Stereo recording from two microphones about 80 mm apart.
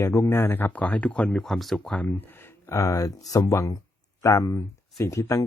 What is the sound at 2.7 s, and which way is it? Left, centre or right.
Speech, left.